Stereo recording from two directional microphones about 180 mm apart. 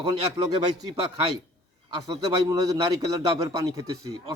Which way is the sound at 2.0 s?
20° right (ahead or behind).